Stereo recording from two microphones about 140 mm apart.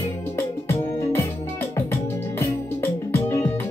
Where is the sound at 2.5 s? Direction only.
15° left (ahead or behind).